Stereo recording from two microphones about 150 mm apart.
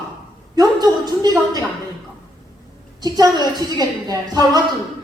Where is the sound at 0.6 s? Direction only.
25° right (ahead or behind).